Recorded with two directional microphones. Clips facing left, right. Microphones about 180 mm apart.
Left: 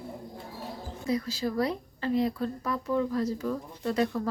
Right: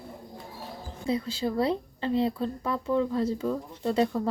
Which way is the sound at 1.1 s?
25° right (ahead or behind).